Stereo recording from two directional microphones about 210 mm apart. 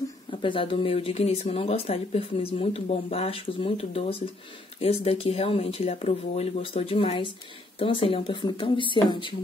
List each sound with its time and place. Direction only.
0.3 s speech: 25° left (ahead or behind)